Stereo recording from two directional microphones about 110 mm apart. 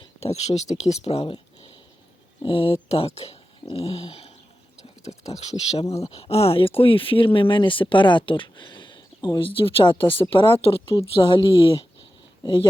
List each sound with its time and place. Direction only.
0.2 s speech: 75° left (ahead or behind); by 2.7 s 55° left (ahead or behind)
2.9 s speech: 65° left (ahead or behind)
5.3 s speech: 85° left; by 12.6 s 45° left (ahead or behind)